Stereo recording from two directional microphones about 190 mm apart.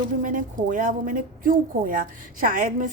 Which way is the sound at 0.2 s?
45° right (ahead or behind).